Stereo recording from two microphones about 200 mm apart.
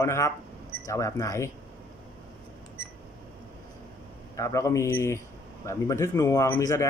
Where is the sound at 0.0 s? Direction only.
15° left (ahead or behind).